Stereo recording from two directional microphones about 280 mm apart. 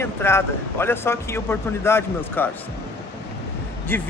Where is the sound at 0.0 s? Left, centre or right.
Centre.